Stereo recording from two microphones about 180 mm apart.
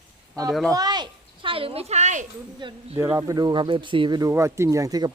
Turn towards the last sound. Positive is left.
turn(degrees=-20)  # may be behind; listen again after turning